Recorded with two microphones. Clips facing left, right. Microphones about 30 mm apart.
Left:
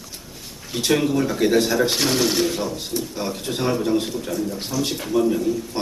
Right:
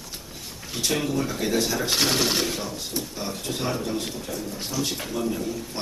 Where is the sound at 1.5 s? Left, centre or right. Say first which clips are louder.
Left 5 dB; left.